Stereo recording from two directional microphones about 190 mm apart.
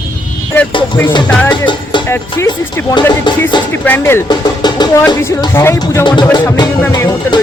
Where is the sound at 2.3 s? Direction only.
20° left (ahead or behind).